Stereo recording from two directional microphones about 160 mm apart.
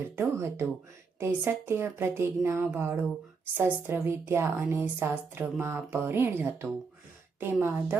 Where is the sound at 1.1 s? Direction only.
15° right (ahead or behind).